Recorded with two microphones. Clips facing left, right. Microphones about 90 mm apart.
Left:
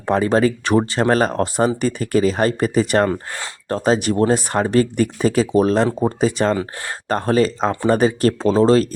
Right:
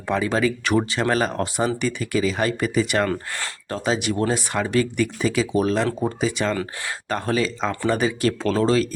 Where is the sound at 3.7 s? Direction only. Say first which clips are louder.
Left 6 dB; 40° left (ahead or behind).